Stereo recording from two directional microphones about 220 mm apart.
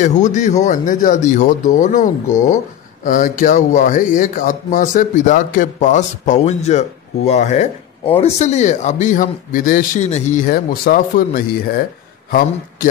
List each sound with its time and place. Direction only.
0.0 s speech: 35° left (ahead or behind)
2.2 s speech: 15° left (ahead or behind)
3.1 s speech: 35° left (ahead or behind)